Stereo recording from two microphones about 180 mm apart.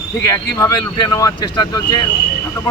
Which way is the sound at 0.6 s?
20° left (ahead or behind).